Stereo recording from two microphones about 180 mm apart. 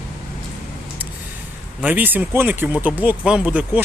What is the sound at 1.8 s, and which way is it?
Speech, 10° right (ahead or behind).